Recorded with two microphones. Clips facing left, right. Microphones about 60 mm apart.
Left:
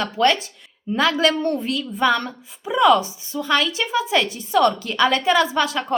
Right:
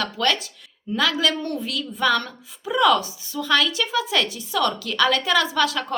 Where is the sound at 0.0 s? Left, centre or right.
Left.